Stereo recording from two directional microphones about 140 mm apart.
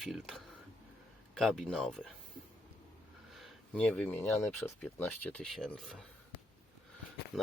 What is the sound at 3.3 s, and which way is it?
Speech, 5° left (ahead or behind).